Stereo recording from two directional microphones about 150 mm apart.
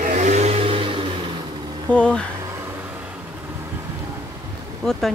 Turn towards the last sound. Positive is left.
turn(degrees=0)  # may be behind; listen again after turning